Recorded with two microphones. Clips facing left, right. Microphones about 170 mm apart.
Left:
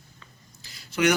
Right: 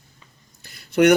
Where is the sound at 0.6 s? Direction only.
60° right (ahead or behind).